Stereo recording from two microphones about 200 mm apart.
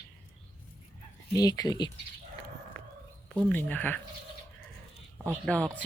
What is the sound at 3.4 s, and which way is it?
Speech, 5° left (ahead or behind).